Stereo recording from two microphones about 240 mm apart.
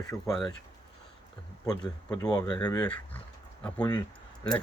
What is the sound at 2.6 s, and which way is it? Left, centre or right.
Speech, centre.